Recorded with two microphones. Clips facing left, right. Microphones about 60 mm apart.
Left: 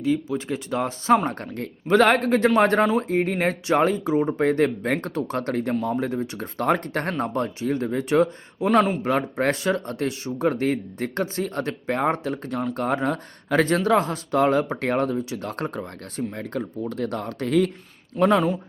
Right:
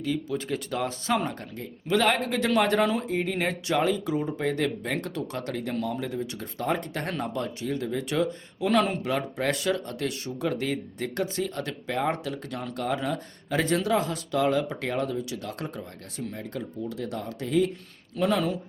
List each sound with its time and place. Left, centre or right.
0.0 s speech: left
1.4 s speech: left
4.4 s speech: left